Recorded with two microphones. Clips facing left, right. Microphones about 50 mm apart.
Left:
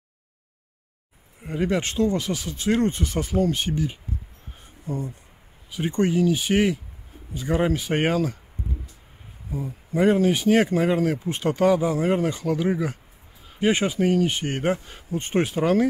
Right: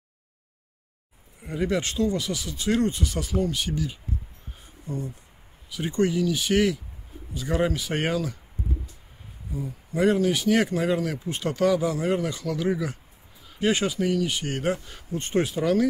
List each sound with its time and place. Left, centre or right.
1.4 s speech: left
5.7 s speech: left
9.5 s speech: left